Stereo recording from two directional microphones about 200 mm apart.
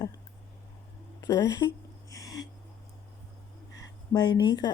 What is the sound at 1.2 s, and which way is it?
Speech, 15° left (ahead or behind).